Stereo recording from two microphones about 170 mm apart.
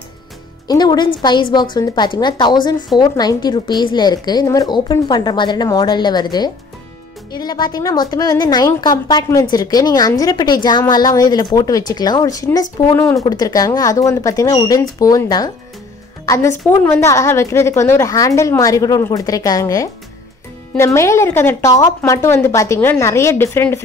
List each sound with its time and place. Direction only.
0.7 s a woman's voice: 25° left (ahead or behind)